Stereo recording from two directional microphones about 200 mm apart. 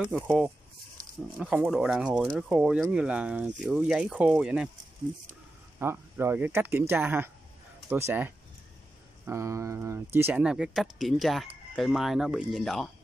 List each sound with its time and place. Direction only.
0.0 s speech: 5° right (ahead or behind)
5.8 s speech: 10° right (ahead or behind)